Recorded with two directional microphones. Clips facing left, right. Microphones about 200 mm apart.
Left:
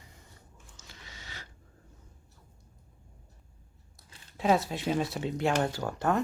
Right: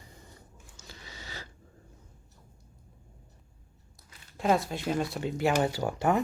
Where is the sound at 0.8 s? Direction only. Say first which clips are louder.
Right 4 dB; 35° right (ahead or behind).